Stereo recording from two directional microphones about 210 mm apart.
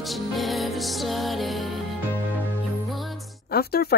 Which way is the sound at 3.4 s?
45° left (ahead or behind).